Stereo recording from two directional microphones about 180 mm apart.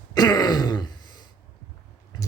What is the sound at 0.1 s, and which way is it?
Throat clearing, 20° left (ahead or behind).